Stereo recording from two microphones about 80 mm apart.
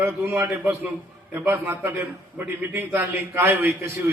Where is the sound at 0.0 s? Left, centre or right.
Right.